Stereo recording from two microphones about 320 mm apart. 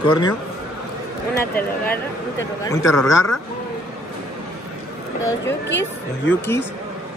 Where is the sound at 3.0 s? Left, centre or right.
Left.